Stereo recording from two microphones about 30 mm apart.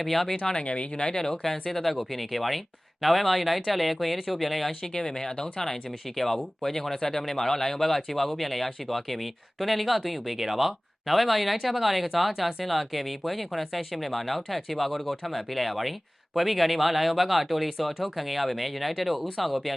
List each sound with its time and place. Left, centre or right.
0.0 s speech: centre
0.5 s speech: left
1.5 s speech: centre
4.9 s speech: left; by 19.5 s centre